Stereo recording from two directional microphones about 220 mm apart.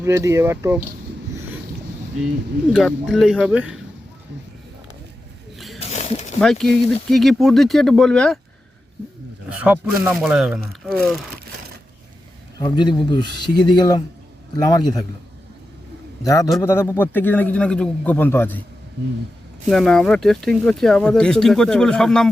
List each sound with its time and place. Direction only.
0.0 s speech: 10° right (ahead or behind)
2.7 s speech: centre (ahead or behind)
5.5 s snake: centre (ahead or behind)
5.8 s snake: 30° left (ahead or behind)
6.4 s speech: centre (ahead or behind)
9.5 s speech: 5° right (ahead or behind)
12.8 s speech: 20° left (ahead or behind)
13.2 s speech: 50° right (ahead or behind)
13.7 s a man's voice: 20° left (ahead or behind)
16.2 s a man's voice: 15° left (ahead or behind)
19.7 s speech: centre (ahead or behind)